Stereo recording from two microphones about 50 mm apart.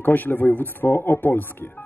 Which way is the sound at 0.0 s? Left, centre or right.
Left.